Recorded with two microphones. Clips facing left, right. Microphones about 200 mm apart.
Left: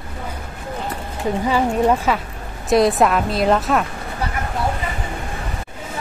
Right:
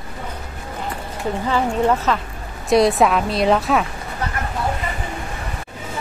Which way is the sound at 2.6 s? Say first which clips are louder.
Even; centre (ahead or behind).